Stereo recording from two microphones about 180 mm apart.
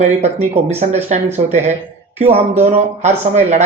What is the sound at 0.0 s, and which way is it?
Speech, 35° right (ahead or behind).